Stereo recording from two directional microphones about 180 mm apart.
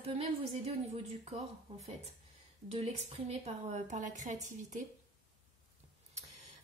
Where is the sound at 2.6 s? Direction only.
35° right (ahead or behind).